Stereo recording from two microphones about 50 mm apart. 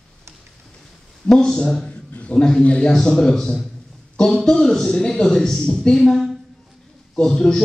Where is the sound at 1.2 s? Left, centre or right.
Centre.